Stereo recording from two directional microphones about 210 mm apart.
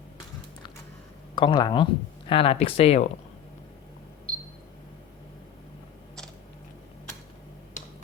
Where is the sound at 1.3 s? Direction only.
20° left (ahead or behind).